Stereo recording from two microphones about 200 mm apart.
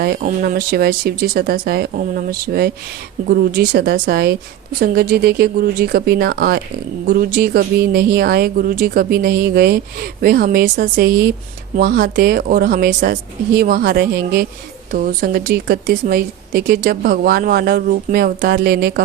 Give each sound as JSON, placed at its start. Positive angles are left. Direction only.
{"t": 0.0, "sound": "speech", "side_deg": -45}